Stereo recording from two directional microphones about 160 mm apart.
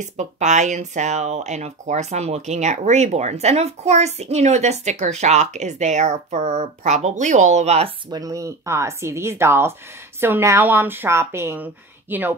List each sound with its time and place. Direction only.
0.0 s speech: 50° right (ahead or behind)
8.1 s a woman's voice: 20° right (ahead or behind)